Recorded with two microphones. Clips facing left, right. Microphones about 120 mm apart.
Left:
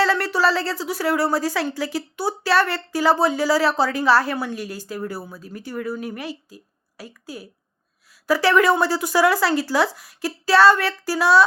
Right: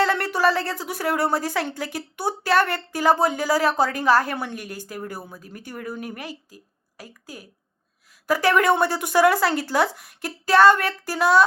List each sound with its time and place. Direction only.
0.0 s a woman's voice: 50° right (ahead or behind)